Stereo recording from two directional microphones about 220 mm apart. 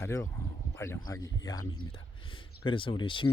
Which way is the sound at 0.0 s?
10° left (ahead or behind).